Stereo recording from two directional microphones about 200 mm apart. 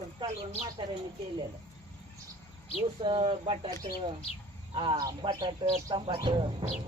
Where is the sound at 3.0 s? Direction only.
25° right (ahead or behind).